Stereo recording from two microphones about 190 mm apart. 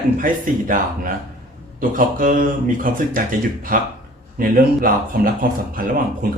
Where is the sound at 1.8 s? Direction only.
45° right (ahead or behind).